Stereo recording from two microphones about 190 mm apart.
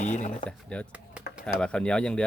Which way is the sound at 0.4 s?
5° left (ahead or behind).